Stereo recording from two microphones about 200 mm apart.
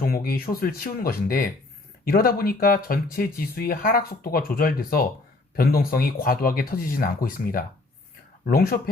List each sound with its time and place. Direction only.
0.0 s speech: 45° left (ahead or behind)